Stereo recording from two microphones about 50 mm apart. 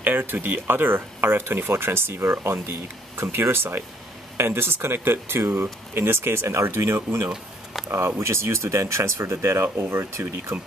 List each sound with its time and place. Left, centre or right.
0.0 s speech: right
10.5 s speech: right